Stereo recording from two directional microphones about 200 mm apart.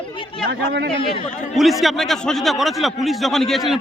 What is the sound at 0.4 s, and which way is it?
Speech, 55° right (ahead or behind).